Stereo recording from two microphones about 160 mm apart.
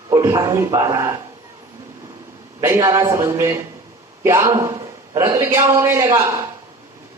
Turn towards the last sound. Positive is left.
turn(degrees=-20)  # may be behind; listen again after turning